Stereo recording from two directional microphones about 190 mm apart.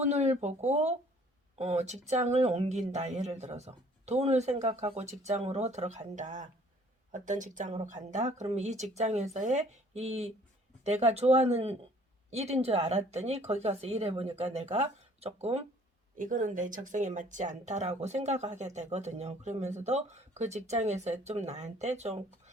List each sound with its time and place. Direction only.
0.1 s speech: 35° right (ahead or behind)
16.1 s speech: 45° right (ahead or behind)